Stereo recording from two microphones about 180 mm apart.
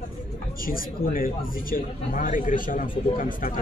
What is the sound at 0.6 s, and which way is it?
A man's voice, 50° left (ahead or behind).